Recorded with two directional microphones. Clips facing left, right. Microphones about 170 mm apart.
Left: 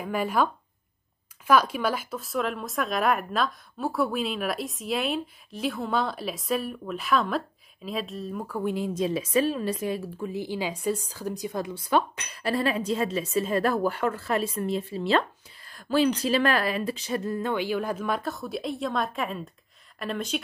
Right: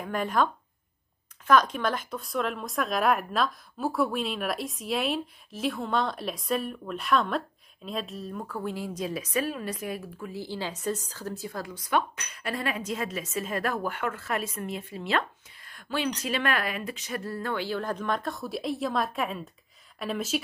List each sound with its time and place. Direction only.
0.0 s a woman's voice: 5° left (ahead or behind); by 17.2 s 30° left (ahead or behind)
17.2 s a woman's voice: 20° left (ahead or behind); by 20.3 s 5° right (ahead or behind)